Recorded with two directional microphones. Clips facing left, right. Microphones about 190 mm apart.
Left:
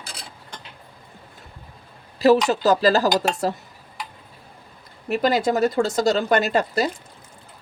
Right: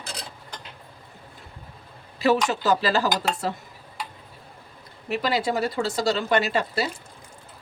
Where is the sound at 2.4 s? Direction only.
40° left (ahead or behind).